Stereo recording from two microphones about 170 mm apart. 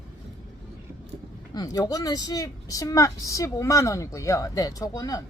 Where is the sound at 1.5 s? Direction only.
20° left (ahead or behind).